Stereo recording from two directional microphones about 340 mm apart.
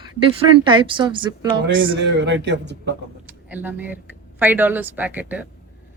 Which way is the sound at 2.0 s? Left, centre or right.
Right.